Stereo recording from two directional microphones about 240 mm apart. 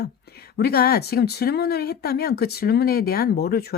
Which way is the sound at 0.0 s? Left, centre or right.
Left.